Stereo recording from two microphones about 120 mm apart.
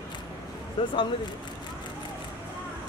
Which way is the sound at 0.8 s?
45° left (ahead or behind).